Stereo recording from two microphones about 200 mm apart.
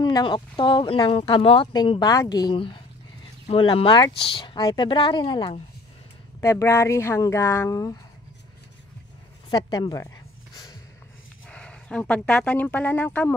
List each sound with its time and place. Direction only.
0.0 s speech: 20° left (ahead or behind)
9.5 s a sound: 20° left (ahead or behind)
11.4 s speech: 5° left (ahead or behind)